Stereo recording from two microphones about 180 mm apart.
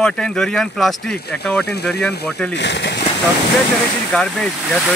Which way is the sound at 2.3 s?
5° left (ahead or behind).